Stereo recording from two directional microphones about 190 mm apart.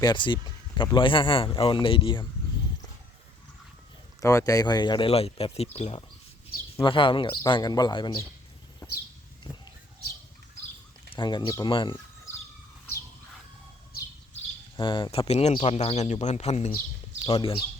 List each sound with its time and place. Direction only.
0.0 s speech: 25° left (ahead or behind)
4.2 s speech: 15° left (ahead or behind)
9.5 s a sound: 30° left (ahead or behind)
11.1 s speech: 25° left (ahead or behind)
14.8 s speech: 25° left (ahead or behind)